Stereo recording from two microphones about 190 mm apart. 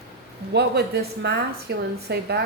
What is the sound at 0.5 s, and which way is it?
A woman's voice, 60° right (ahead or behind).